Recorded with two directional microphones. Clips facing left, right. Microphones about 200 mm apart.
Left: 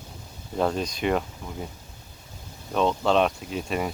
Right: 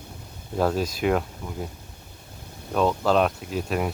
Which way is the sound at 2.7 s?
5° right (ahead or behind).